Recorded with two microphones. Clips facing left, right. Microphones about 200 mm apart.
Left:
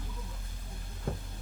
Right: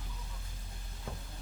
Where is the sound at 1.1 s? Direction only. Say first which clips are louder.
Left 8 dB; 55° left (ahead or behind).